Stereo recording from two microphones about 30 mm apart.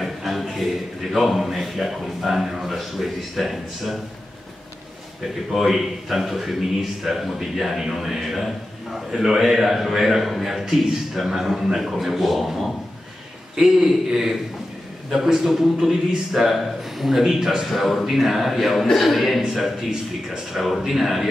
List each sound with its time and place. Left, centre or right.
0.0 s a sound: centre
1.1 s a man's voice: centre
5.5 s a man's voice: centre
12.4 s a man's voice: centre
13.6 s a man's voice: centre
17.6 s a man's voice: centre
20.5 s a man's voice: centre